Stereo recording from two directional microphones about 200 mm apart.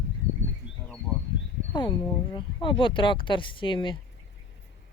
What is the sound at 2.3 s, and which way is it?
Speech, 25° left (ahead or behind).